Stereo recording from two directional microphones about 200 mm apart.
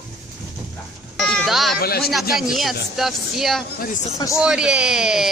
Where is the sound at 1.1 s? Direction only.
5° left (ahead or behind).